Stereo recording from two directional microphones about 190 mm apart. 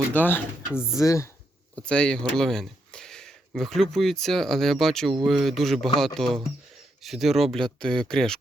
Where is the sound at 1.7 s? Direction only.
5° left (ahead or behind).